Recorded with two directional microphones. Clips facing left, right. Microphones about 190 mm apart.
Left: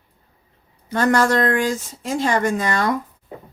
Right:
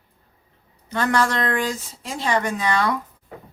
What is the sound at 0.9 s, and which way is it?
Speech, 45° left (ahead or behind).